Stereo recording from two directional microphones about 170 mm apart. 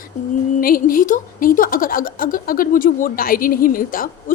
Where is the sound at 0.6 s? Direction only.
55° left (ahead or behind).